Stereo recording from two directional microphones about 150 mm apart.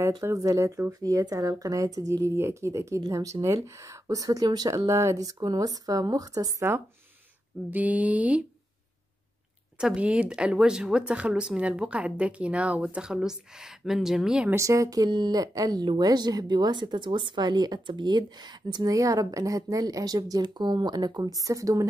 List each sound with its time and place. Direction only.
0.2 s speech: 20° right (ahead or behind)
9.8 s speech: 5° right (ahead or behind)
14.5 s speech: 20° right (ahead or behind)